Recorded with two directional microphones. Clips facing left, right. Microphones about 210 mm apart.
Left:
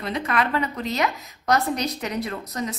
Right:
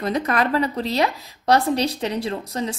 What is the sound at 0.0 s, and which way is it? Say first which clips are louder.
A woman's voice: right 4 dB; 40° right (ahead or behind).